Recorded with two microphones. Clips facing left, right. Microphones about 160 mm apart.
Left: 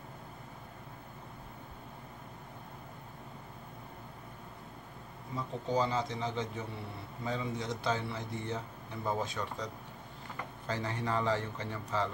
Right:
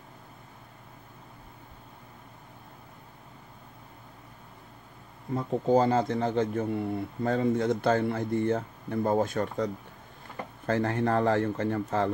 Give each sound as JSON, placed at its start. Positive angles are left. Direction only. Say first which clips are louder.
{"t": 5.3, "sound": "speech", "louder": "right 10 dB", "side_deg": -55}
{"t": 10.7, "sound": "speech", "louder": "right 9 dB", "side_deg": -55}